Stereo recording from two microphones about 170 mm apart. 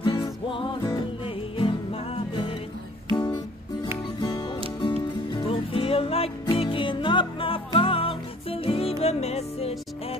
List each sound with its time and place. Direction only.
0.0 s music: 30° left (ahead or behind)